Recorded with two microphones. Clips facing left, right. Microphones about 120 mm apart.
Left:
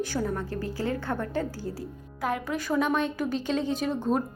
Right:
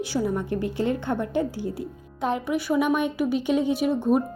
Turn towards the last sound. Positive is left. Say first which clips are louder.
# right 5 dB
turn(degrees=-10)  # may be behind; listen again after turning